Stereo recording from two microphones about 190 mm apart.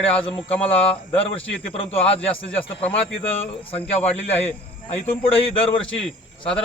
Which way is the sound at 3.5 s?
30° left (ahead or behind).